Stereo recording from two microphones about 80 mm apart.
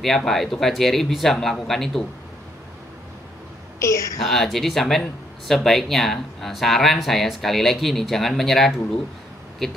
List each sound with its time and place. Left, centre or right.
0.0 s speech: centre
3.8 s a woman's voice: left
4.2 s speech: centre